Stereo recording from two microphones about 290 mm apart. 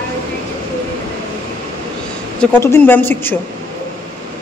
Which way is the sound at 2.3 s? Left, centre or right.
Centre.